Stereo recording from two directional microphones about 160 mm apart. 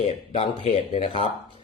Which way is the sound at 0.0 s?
40° left (ahead or behind).